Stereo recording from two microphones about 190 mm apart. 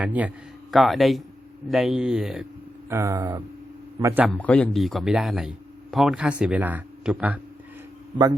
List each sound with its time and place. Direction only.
0.0 s speech: 10° right (ahead or behind)
2.9 s speech: 15° right (ahead or behind)
4.4 s speech: 5° left (ahead or behind)